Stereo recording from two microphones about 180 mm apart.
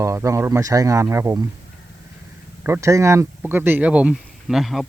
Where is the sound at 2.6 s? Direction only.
15° right (ahead or behind).